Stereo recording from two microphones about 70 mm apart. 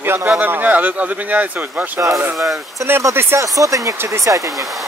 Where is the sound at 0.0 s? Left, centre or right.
Right.